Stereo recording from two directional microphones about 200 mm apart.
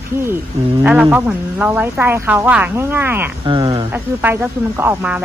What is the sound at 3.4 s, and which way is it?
Speech, 20° right (ahead or behind).